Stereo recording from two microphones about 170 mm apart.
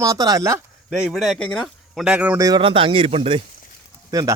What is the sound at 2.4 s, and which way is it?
A man's voice, 25° right (ahead or behind).